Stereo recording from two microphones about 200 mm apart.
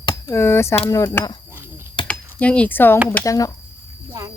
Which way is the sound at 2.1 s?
5° left (ahead or behind).